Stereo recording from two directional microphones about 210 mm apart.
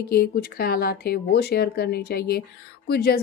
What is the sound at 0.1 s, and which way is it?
Speech, 45° left (ahead or behind).